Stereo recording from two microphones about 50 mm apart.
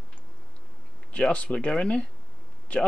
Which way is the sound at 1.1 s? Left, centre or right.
Left.